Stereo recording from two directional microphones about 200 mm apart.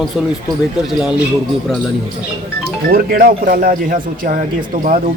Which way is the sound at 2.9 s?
45° right (ahead or behind).